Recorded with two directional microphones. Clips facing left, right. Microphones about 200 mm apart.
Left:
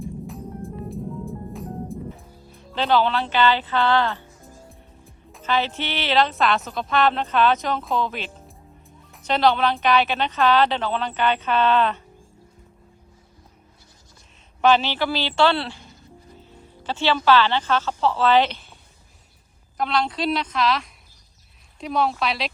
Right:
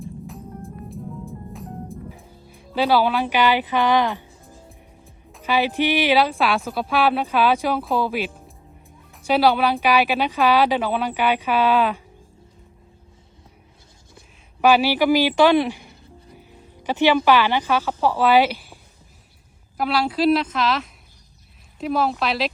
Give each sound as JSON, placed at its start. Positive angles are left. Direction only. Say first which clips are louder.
{"t": 0.0, "sound": "music", "louder": "left 2 dB", "side_deg": 0}
{"t": 2.6, "sound": "speech", "louder": "right 2 dB", "side_deg": -10}
{"t": 4.7, "sound": "music", "louder": "even", "side_deg": 0}
{"t": 5.4, "sound": "speech", "louder": "right 4 dB", "side_deg": -10}
{"t": 14.6, "sound": "a woman's voice", "louder": "right 3 dB", "side_deg": -10}